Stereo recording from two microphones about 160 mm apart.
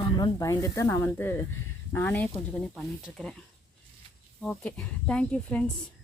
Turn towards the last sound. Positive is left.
turn(degrees=5)  # may be behind; listen again after turning